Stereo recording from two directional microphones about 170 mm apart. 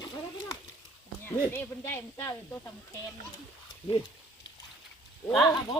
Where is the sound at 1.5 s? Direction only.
15° left (ahead or behind).